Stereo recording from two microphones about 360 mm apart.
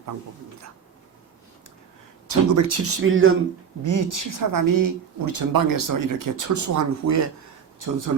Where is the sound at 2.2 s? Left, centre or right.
Right.